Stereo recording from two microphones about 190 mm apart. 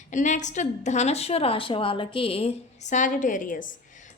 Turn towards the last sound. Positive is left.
turn(degrees=45)  # may be behind; listen again after turning